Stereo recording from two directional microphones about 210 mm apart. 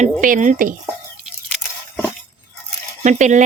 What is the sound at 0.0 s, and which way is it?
Speech, 35° right (ahead or behind).